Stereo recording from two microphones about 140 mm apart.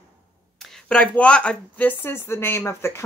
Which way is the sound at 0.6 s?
5° left (ahead or behind).